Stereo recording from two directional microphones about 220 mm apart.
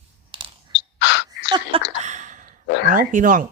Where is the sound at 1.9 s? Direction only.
30° right (ahead or behind).